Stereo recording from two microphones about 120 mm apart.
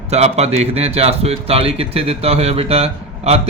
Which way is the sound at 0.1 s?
65° right (ahead or behind).